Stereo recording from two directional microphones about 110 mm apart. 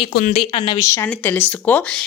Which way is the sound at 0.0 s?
55° left (ahead or behind).